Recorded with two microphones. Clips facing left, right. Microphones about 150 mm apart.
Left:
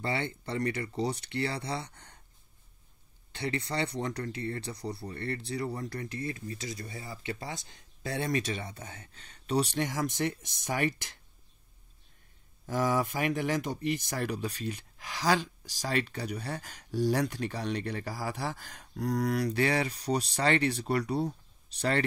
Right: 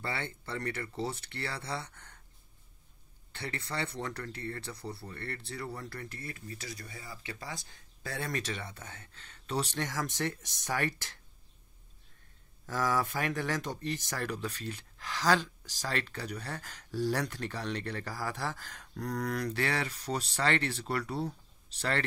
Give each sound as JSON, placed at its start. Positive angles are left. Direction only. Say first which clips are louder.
{"t": 0.0, "sound": "speech", "louder": "left 5 dB", "side_deg": 20}
{"t": 3.3, "sound": "speech", "louder": "left 6 dB", "side_deg": 20}
{"t": 12.6, "sound": "speech", "louder": "left 2 dB", "side_deg": 15}